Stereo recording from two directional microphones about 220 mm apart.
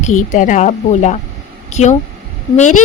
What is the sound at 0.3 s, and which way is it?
Speech, 35° left (ahead or behind).